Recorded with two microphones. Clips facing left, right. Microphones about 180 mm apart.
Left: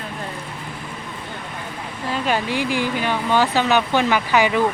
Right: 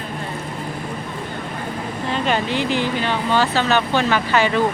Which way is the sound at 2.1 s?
5° left (ahead or behind).